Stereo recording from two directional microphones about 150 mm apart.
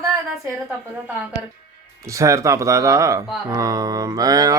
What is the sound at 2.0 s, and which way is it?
Speech, 20° right (ahead or behind).